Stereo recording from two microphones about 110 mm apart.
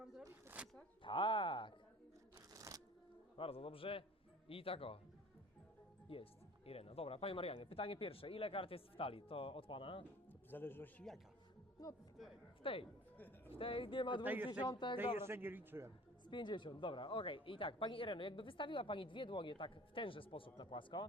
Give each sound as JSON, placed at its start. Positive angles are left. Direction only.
{"t": 0.6, "sound": "zipper", "side_deg": -10}
{"t": 1.0, "sound": "speech", "side_deg": 50}
{"t": 2.5, "sound": "shuffling cards", "side_deg": -30}
{"t": 3.3, "sound": "speech", "side_deg": 55}
{"t": 6.1, "sound": "speech", "side_deg": 55}
{"t": 10.5, "sound": "a man's voice", "side_deg": 20}
{"t": 11.8, "sound": "a man's voice", "side_deg": 35}
{"t": 12.6, "sound": "speech", "side_deg": 55}
{"t": 13.1, "sound": "music", "side_deg": 15}
{"t": 13.5, "sound": "speech", "side_deg": 55}
{"t": 14.3, "sound": "speech", "side_deg": -15}
{"t": 14.7, "sound": "speech", "side_deg": 45}
{"t": 14.9, "sound": "a man's voice", "side_deg": -20}
{"t": 16.3, "sound": "speech", "side_deg": 45}